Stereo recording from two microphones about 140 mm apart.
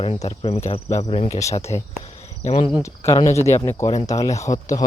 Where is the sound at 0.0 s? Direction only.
45° left (ahead or behind).